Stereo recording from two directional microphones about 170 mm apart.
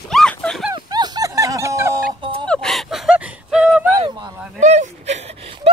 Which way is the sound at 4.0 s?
25° right (ahead or behind).